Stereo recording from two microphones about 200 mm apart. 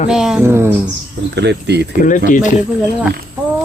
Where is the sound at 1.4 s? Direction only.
60° right (ahead or behind).